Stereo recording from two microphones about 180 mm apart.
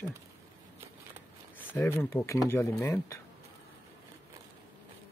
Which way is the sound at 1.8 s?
15° left (ahead or behind).